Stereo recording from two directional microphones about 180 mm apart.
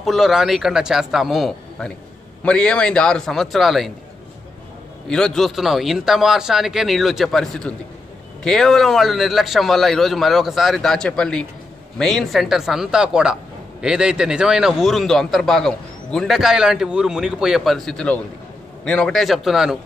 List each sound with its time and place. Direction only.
0.0 s a man's voice: centre (ahead or behind)
5.0 s a man's voice: 5° left (ahead or behind)